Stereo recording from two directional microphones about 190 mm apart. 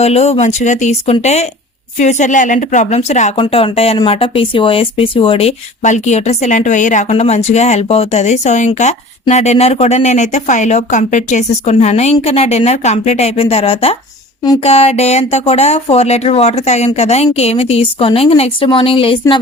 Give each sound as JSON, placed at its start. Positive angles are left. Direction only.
{"t": 0.0, "sound": "speech", "side_deg": 35}